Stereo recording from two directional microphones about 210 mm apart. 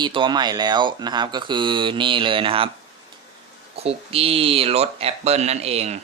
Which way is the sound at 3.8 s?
30° right (ahead or behind).